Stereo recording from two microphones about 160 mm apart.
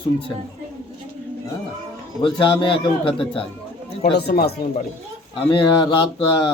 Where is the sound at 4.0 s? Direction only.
90° left.